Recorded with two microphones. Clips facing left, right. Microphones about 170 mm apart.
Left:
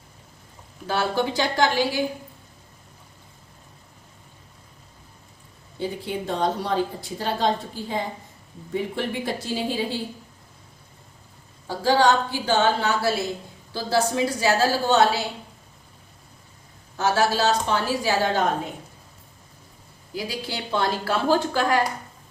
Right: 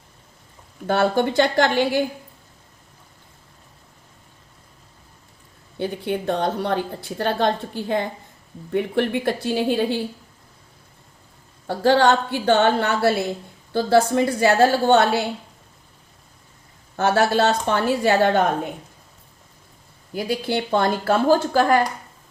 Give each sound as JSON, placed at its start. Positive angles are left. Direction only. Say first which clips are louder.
{"t": 0.9, "sound": "a woman's voice", "louder": "right 5 dB", "side_deg": -55}
{"t": 5.8, "sound": "a woman's voice", "louder": "right 4 dB", "side_deg": -65}
{"t": 11.7, "sound": "a woman's voice", "louder": "right 3 dB", "side_deg": -60}
{"t": 17.0, "sound": "a woman's voice", "louder": "right 3 dB", "side_deg": -55}
{"t": 20.1, "sound": "a woman's voice", "louder": "right 7 dB", "side_deg": -55}